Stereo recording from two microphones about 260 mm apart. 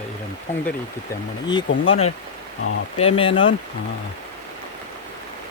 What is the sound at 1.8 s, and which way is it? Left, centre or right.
Speech, left.